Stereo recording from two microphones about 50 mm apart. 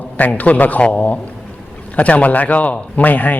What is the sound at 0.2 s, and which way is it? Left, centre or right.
A man's voice, left.